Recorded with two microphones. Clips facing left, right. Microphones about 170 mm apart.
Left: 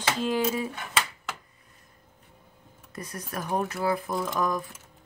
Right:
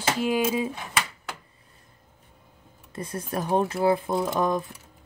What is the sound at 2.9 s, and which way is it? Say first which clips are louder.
Speech: right 5 dB; 25° right (ahead or behind).